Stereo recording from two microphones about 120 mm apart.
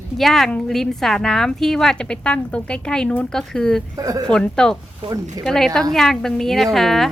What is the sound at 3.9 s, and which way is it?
Speech, 30° right (ahead or behind).